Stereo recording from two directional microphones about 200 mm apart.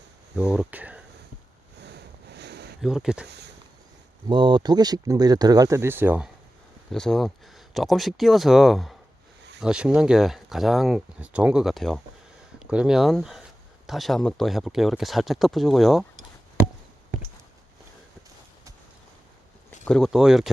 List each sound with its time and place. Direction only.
0.3 s speech: 5° right (ahead or behind)
1.8 s sniff: 55° right (ahead or behind)
2.8 s speech: 5° right (ahead or behind)
4.3 s speech: 25° right (ahead or behind); by 16.0 s centre (ahead or behind)
19.8 s speech: 5° left (ahead or behind)